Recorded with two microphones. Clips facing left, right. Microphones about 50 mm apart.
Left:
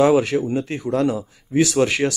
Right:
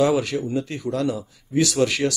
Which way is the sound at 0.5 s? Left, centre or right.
Left.